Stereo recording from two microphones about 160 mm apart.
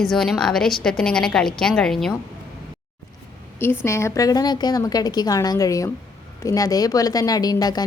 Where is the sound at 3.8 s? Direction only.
15° left (ahead or behind).